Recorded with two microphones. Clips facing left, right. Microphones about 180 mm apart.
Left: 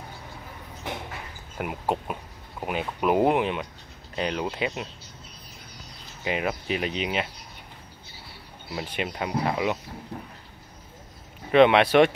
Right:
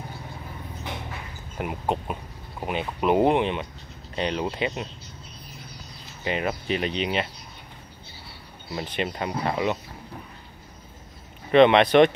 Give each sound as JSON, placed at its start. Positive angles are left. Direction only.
{"t": 1.6, "sound": "speech", "side_deg": 5}
{"t": 6.2, "sound": "speech", "side_deg": 5}
{"t": 8.7, "sound": "speech", "side_deg": 10}
{"t": 11.5, "sound": "speech", "side_deg": 5}